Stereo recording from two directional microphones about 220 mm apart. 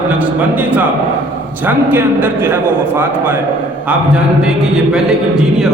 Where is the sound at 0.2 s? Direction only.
5° right (ahead or behind).